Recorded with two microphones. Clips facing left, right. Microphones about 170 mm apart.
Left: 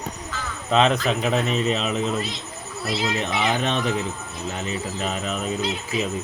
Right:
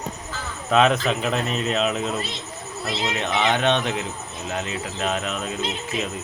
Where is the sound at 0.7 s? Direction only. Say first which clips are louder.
Right 1 dB; 5° right (ahead or behind).